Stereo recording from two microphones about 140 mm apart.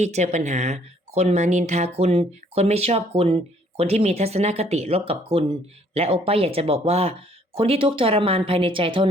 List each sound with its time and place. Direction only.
0.0 s speech: 55° right (ahead or behind); by 9.0 s 40° right (ahead or behind)